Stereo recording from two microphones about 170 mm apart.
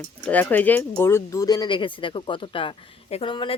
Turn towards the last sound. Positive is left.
turn(degrees=30)  # may be behind; listen again after turning